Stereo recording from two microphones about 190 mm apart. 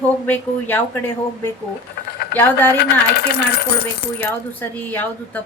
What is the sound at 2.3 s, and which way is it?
Speech, 10° left (ahead or behind).